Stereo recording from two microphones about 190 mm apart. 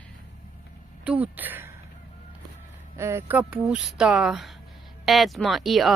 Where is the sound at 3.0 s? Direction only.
15° right (ahead or behind).